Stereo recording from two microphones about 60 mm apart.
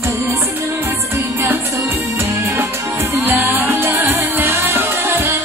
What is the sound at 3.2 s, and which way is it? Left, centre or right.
Music, right.